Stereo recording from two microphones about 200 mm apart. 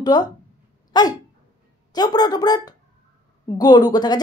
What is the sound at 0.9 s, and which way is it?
Dog, 20° left (ahead or behind).